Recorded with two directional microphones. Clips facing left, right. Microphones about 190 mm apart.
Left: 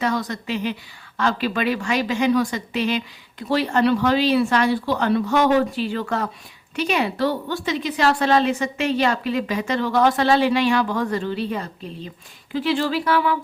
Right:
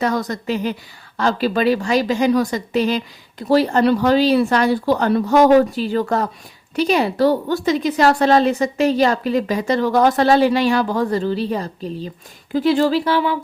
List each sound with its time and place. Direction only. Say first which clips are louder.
0.0 s a woman's voice: right 3 dB; 45° right (ahead or behind); by 13.4 s 25° right (ahead or behind)